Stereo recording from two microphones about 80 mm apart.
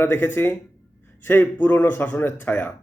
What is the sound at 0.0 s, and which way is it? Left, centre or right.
A man's voice, left.